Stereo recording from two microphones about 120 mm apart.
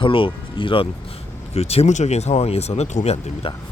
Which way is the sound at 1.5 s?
60° left (ahead or behind).